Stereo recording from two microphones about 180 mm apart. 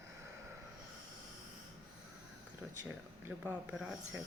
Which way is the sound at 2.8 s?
10° right (ahead or behind).